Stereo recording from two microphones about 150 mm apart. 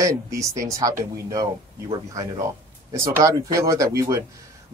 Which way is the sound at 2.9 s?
20° right (ahead or behind).